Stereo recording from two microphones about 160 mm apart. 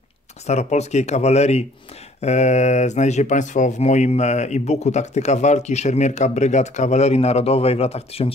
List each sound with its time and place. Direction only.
0.5 s speech: 45° left (ahead or behind)